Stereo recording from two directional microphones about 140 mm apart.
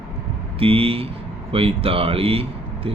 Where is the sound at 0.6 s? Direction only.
40° right (ahead or behind).